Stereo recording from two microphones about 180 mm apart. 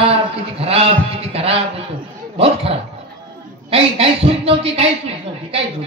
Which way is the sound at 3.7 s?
30° right (ahead or behind).